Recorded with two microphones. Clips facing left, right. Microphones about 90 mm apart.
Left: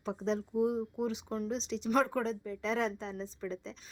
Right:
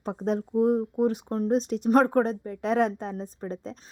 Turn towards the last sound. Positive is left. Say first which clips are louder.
# right 5 dB
turn(degrees=-50)  # may be behind; listen again after turning